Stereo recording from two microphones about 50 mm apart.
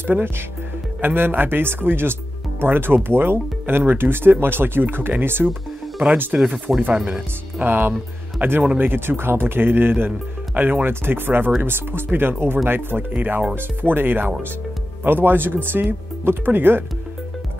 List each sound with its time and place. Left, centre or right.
1.0 s speech: right
6.3 s speech: right
7.5 s speech: right